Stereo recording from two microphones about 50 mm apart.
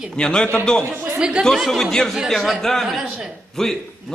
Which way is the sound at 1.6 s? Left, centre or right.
Centre.